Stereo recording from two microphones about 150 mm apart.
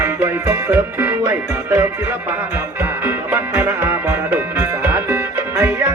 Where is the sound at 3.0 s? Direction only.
15° right (ahead or behind).